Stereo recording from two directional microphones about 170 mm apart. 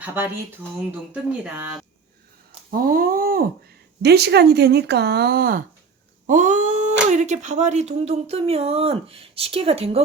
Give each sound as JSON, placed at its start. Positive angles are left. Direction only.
{"t": 1.1, "sound": "speech", "side_deg": -10}
{"t": 2.6, "sound": "a sound", "side_deg": -55}
{"t": 4.0, "sound": "speech", "side_deg": -75}
{"t": 6.2, "sound": "cat", "side_deg": -50}
{"t": 7.1, "sound": "speech", "side_deg": -45}